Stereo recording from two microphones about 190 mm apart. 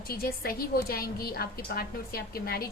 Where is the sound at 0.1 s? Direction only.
55° left (ahead or behind).